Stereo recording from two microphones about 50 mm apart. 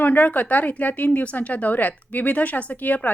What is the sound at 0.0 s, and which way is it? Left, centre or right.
Speech, left.